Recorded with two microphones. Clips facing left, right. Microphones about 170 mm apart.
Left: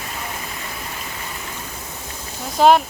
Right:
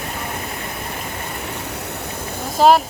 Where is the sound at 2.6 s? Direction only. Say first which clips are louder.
Even; centre (ahead or behind).